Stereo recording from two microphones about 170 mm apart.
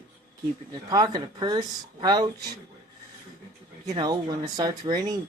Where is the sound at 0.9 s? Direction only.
25° right (ahead or behind).